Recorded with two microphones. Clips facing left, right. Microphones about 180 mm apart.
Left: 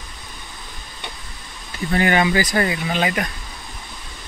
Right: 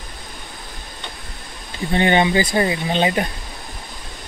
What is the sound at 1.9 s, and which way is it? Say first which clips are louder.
Speech: right 1 dB; 25° right (ahead or behind).